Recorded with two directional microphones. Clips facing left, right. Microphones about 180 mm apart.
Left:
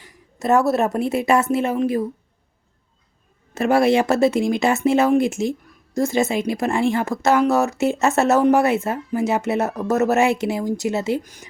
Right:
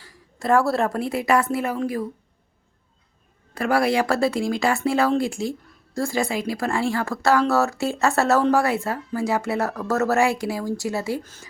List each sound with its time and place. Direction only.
0.0 s a woman's voice: 20° left (ahead or behind)
3.5 s speech: 25° left (ahead or behind)